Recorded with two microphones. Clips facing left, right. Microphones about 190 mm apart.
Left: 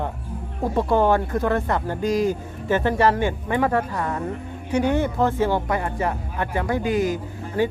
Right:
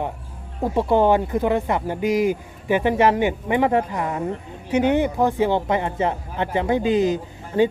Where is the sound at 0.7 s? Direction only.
15° right (ahead or behind).